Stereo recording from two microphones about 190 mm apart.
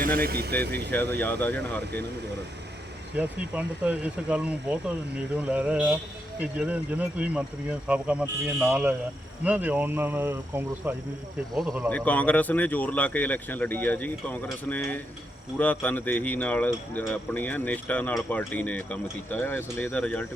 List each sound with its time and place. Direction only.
0.2 s speech: 55° right (ahead or behind)
1.2 s speech: 10° left (ahead or behind)
3.2 s speech: 10° right (ahead or behind)
11.9 s speech: 10° left (ahead or behind)